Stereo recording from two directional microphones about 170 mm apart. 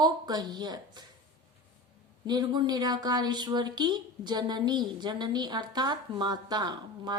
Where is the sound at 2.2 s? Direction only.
25° right (ahead or behind).